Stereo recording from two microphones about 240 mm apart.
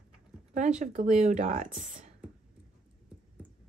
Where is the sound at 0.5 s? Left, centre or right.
Right.